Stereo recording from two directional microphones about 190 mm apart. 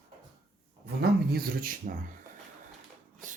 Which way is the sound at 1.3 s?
50° right (ahead or behind).